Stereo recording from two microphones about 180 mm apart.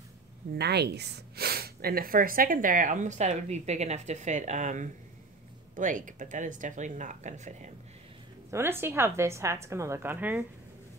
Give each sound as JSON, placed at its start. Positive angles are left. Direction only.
{"t": 0.6, "sound": "speech", "side_deg": -65}
{"t": 8.5, "sound": "a woman's voice", "side_deg": -15}